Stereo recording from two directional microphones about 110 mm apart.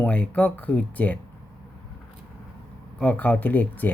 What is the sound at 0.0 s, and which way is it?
Speech, 10° left (ahead or behind).